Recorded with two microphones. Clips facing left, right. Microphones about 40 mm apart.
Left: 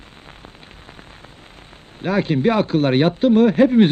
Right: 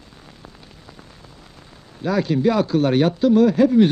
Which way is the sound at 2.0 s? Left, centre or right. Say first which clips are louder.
Left 1 dB; left.